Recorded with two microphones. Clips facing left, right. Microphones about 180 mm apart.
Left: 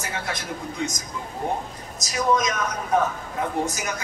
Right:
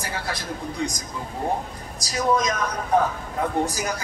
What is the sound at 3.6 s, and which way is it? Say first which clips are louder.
Speech: right 2 dB; 35° right (ahead or behind).